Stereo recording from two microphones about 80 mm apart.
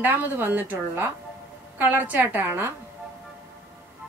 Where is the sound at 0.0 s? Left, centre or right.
Right.